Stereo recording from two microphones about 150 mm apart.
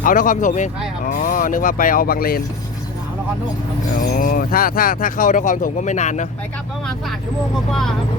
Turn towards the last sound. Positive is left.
turn(degrees=0)  # may be behind; listen again after turning